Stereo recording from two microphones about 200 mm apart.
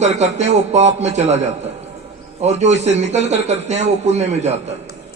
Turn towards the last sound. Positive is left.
turn(degrees=-35)  # may be behind; listen again after turning